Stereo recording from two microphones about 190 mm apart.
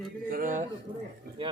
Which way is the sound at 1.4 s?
25° right (ahead or behind).